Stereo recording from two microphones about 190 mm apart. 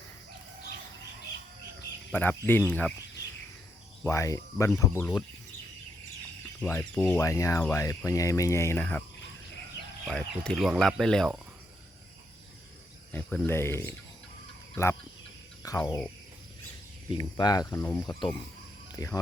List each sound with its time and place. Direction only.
2.1 s speech: 10° left (ahead or behind)
4.0 s speech: 15° left (ahead or behind)
6.4 s speech: 10° left (ahead or behind)
10.1 s speech: 5° left (ahead or behind)
13.1 s speech: 5° left (ahead or behind)
17.2 s speech: 20° left (ahead or behind)